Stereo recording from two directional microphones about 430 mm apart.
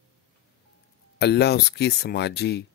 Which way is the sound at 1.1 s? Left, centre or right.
Left.